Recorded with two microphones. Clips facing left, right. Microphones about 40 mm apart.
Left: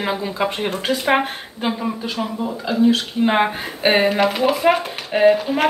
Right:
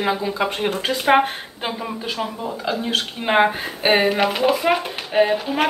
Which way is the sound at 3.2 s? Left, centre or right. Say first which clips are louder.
Right 1 dB; centre.